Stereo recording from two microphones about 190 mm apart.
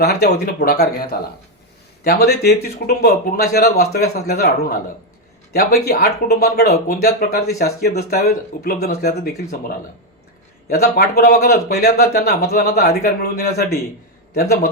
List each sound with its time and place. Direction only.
0.0 s speech: 60° left (ahead or behind)